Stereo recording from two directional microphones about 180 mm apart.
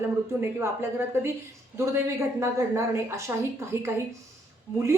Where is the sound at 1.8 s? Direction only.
15° right (ahead or behind).